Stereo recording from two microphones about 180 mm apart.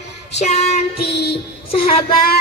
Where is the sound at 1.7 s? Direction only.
30° left (ahead or behind).